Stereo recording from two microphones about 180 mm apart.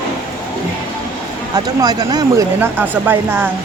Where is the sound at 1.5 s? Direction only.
20° right (ahead or behind).